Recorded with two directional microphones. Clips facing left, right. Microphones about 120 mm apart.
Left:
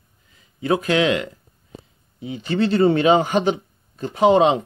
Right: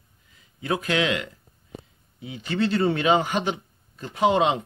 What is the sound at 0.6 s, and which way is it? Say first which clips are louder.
A man's voice: left 6 dB; 30° left (ahead or behind).